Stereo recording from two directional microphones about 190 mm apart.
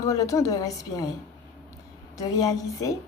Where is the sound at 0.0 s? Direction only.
15° left (ahead or behind).